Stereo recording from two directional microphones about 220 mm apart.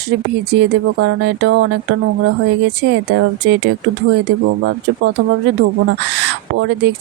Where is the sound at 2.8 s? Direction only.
50° right (ahead or behind).